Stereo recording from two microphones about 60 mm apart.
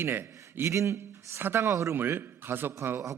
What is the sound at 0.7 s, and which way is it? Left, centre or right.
A man's voice, right.